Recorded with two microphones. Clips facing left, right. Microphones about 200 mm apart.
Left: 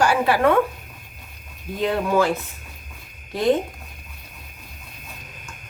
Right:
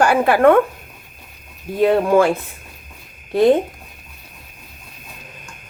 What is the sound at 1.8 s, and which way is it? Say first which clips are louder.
Speech: right 6 dB; 55° right (ahead or behind).